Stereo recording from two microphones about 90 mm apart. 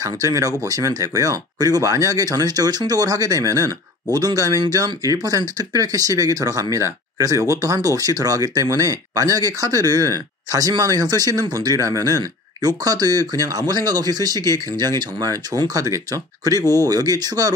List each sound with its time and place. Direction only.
0.0 s speech: 40° right (ahead or behind)